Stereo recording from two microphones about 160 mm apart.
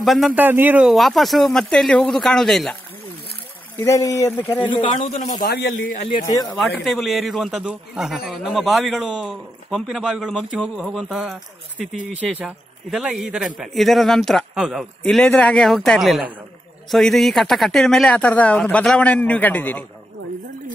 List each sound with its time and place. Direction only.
0.0 s a man's voice: centre (ahead or behind)
0.3 s a man's voice: 10° right (ahead or behind)
3.7 s speech: 20° left (ahead or behind)
5.0 s a man's voice: 50° left (ahead or behind)
5.5 s speech: 75° left (ahead or behind)
6.8 s a man's voice: centre (ahead or behind)